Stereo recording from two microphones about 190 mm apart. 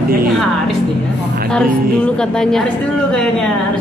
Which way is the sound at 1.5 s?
5° left (ahead or behind).